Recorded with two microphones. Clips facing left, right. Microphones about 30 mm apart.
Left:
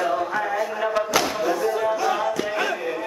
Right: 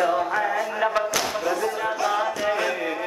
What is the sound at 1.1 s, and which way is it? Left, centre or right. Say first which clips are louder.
Thump: left 3 dB; centre.